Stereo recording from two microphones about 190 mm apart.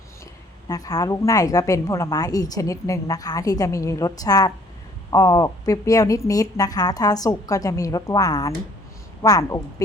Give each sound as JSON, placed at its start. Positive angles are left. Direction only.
{"t": 0.7, "sound": "a woman's voice", "side_deg": 20}